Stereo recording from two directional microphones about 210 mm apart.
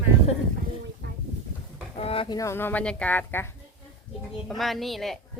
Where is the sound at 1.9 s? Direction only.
25° left (ahead or behind); by 5.2 s centre (ahead or behind).